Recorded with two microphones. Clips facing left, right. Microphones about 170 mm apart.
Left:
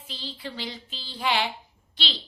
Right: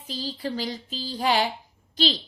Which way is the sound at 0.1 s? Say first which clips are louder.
Right 7 dB; 40° right (ahead or behind).